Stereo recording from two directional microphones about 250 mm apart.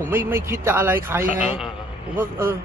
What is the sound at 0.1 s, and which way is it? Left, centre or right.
Speech, centre.